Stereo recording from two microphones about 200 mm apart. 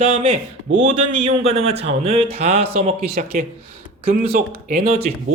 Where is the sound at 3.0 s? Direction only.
45° right (ahead or behind).